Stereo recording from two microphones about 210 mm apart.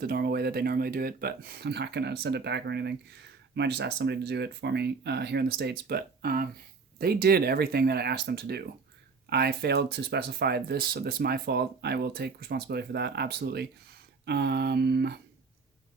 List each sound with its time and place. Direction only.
0.0 s speech: 45° right (ahead or behind)